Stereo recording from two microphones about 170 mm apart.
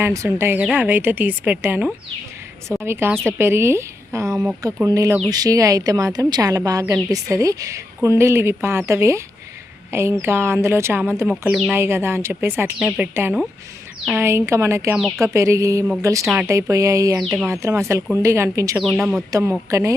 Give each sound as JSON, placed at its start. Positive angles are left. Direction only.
{"t": 0.0, "sound": "a woman's voice", "side_deg": -15}
{"t": 16.2, "sound": "a woman's voice", "side_deg": -5}
{"t": 16.5, "sound": "speech", "side_deg": -20}
{"t": 17.2, "sound": "speech", "side_deg": -5}
{"t": 17.5, "sound": "a woman's voice", "side_deg": -15}
{"t": 18.8, "sound": "speech", "side_deg": -5}
{"t": 19.3, "sound": "a woman's voice", "side_deg": -15}